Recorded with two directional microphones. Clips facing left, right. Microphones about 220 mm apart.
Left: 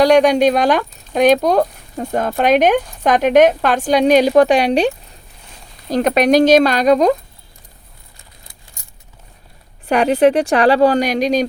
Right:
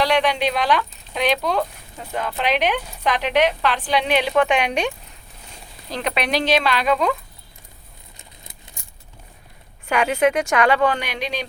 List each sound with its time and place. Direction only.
0.0 s speech: 45° left (ahead or behind)
5.9 s speech: 45° left (ahead or behind)
9.8 s speech: 35° left (ahead or behind)